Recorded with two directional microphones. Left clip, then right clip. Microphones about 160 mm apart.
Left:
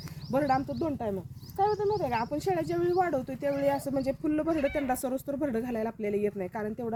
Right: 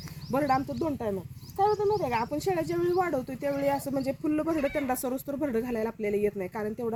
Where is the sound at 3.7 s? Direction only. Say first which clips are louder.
Even; 25° left (ahead or behind).